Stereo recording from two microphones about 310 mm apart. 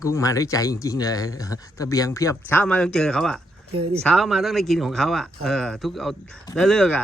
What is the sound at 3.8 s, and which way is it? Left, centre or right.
Speech, centre.